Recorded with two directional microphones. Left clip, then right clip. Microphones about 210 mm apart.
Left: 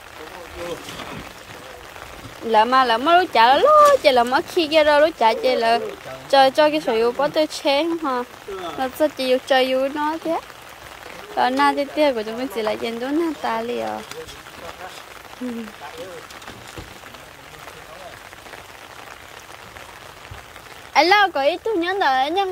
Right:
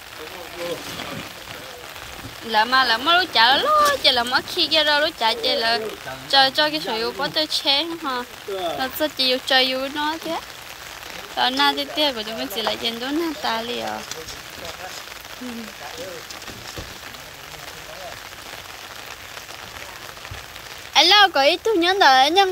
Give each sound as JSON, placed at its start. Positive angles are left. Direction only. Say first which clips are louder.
{"t": 2.5, "sound": "speech", "louder": "left 2 dB", "side_deg": 30}
{"t": 20.9, "sound": "speech", "louder": "right 1 dB", "side_deg": 25}
{"t": 21.3, "sound": "speech", "louder": "right 2 dB", "side_deg": 10}